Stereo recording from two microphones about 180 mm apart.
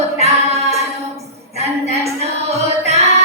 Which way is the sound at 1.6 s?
35° right (ahead or behind).